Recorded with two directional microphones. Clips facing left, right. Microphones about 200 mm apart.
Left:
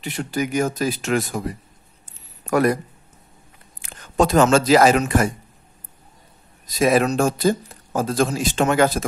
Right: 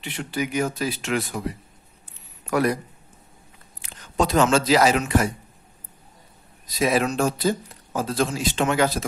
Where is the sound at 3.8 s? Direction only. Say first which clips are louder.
Left 4 dB; 50° left (ahead or behind).